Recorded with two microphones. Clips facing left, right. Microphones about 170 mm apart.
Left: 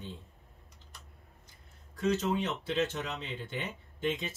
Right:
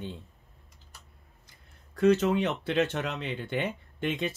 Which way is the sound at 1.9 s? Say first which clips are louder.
Right 7 dB; 65° right (ahead or behind).